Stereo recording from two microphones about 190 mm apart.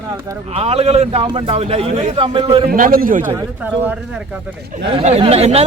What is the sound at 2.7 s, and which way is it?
Speech, 50° right (ahead or behind).